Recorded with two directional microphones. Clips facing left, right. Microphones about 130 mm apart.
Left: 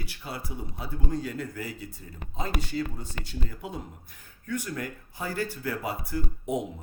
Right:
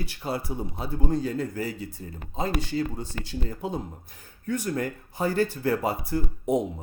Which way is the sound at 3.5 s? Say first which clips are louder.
Right 6 dB; 35° right (ahead or behind).